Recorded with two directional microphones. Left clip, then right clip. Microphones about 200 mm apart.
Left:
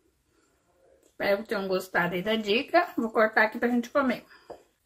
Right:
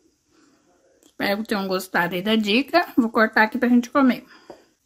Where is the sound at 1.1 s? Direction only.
60° right (ahead or behind).